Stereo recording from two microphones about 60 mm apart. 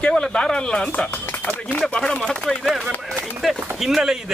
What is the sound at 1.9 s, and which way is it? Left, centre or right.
Speech, centre.